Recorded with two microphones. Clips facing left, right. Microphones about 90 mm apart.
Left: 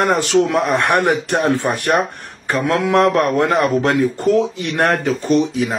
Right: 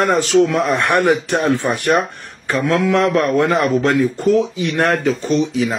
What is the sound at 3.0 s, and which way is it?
A man's voice, 60° left (ahead or behind).